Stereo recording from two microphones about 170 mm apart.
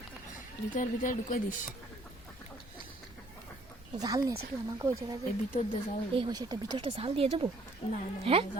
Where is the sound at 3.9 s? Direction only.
20° right (ahead or behind).